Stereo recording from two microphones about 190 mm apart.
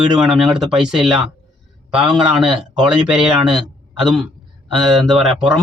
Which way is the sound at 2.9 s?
5° right (ahead or behind).